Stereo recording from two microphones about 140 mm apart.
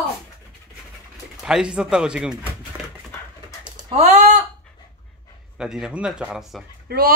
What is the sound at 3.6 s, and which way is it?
Typing, 35° right (ahead or behind).